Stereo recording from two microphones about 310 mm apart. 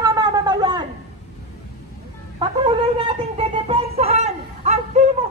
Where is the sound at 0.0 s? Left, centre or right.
Centre.